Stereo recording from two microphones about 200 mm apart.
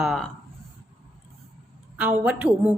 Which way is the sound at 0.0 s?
Centre (ahead or behind).